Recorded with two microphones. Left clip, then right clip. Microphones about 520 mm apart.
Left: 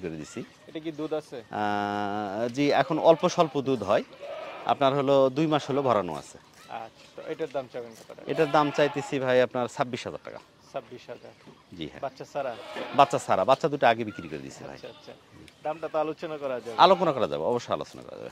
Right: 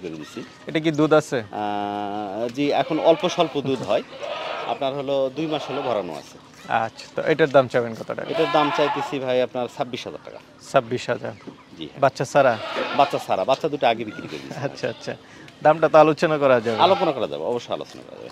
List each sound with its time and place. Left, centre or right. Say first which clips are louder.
0.7 s speech: right 14 dB; right
1.5 s speech: right 2 dB; left
4.6 s speech: left 3 dB; left
6.7 s speech: right 16 dB; right
8.4 s speech: right 3 dB; left
10.7 s speech: right 17 dB; right
12.9 s speech: right 1 dB; left
14.6 s speech: right 14 dB; right
16.7 s speech: right 2 dB; left